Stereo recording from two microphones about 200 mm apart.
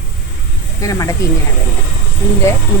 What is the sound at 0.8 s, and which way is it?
Speech, 15° left (ahead or behind).